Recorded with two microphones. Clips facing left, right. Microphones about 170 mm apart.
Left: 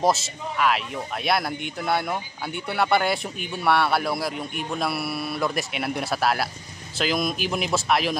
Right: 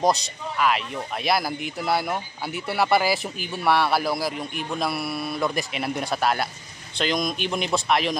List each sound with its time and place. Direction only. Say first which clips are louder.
0.0 s speech: even; centre (ahead or behind)